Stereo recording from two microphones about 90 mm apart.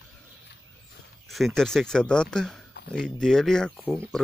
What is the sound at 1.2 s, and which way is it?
Speech, centre (ahead or behind).